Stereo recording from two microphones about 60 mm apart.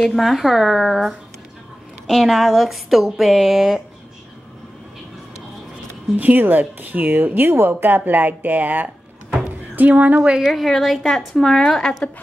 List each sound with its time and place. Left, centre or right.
0.1 s speech: centre
6.1 s a woman's voice: right
10.4 s speech: centre